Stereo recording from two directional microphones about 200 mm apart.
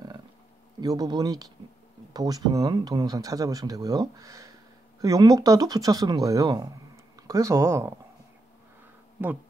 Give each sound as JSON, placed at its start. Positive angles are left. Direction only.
{"t": 0.7, "sound": "speech", "side_deg": -20}